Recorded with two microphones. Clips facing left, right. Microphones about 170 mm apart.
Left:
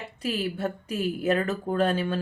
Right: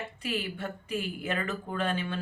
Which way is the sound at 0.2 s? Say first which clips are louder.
Left 7 dB; 40° left (ahead or behind).